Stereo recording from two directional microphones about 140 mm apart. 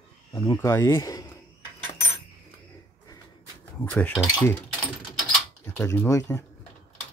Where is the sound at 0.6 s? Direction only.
15° left (ahead or behind).